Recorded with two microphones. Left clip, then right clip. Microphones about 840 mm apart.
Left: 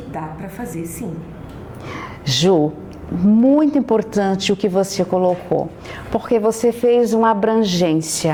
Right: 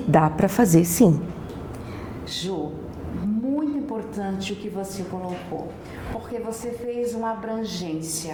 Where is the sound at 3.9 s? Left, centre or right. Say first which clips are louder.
Left 12 dB; left.